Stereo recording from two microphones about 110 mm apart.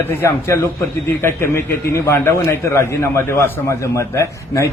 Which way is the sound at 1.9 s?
25° left (ahead or behind).